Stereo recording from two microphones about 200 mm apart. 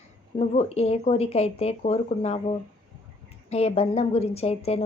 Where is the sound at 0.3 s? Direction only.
30° left (ahead or behind).